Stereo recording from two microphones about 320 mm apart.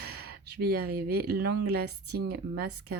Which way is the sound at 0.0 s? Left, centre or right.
Right.